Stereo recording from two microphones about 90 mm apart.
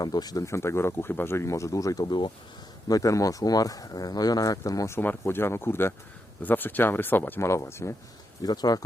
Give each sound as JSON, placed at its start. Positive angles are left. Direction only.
{"t": 0.0, "sound": "speech", "side_deg": 45}
{"t": 0.4, "sound": "speech", "side_deg": 30}
{"t": 2.0, "sound": "speech", "side_deg": 60}
{"t": 2.9, "sound": "speech", "side_deg": 40}
{"t": 4.9, "sound": "speech", "side_deg": 25}
{"t": 8.4, "sound": "speech", "side_deg": 50}